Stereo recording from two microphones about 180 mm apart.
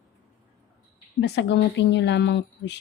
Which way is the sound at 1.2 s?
75° left (ahead or behind).